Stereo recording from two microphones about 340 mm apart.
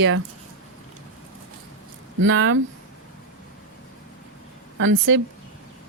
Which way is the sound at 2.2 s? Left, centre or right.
Right.